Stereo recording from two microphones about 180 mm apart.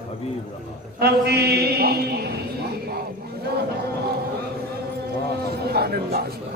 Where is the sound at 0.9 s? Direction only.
65° right (ahead or behind).